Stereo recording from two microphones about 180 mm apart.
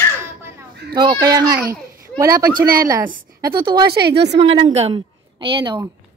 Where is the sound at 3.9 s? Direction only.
65° right (ahead or behind).